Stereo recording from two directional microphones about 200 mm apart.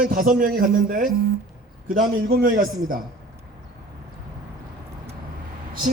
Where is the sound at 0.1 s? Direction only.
45° right (ahead or behind).